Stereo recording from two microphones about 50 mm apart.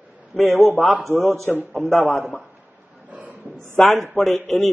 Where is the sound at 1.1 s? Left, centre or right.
Right.